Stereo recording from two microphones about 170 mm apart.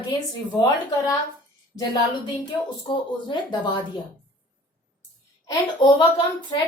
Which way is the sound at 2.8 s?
30° left (ahead or behind).